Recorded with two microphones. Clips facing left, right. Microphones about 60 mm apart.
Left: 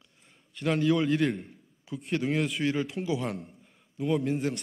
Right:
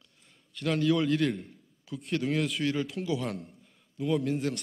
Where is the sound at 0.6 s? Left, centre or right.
Centre.